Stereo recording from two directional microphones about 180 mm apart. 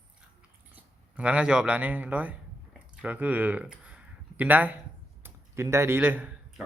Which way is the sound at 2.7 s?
5° right (ahead or behind).